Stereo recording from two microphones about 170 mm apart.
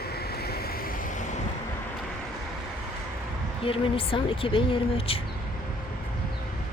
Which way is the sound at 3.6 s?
35° left (ahead or behind).